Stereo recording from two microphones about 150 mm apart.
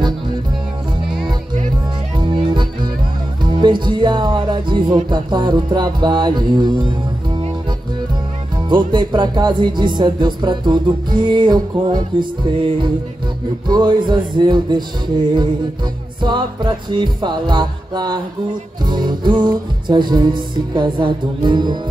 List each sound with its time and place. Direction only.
2.1 s music: 30° right (ahead or behind)
8.6 s music: 30° right (ahead or behind)
16.2 s music: 30° right (ahead or behind)